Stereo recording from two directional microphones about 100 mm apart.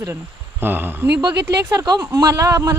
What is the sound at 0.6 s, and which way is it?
Speech, 20° right (ahead or behind).